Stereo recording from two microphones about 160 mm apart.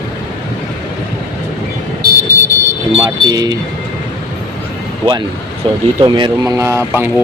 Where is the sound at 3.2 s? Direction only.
25° right (ahead or behind).